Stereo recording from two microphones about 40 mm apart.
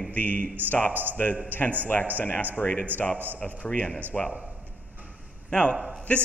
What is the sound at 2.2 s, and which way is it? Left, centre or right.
Speech, left.